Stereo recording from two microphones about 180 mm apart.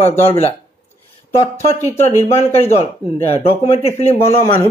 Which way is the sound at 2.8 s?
35° left (ahead or behind).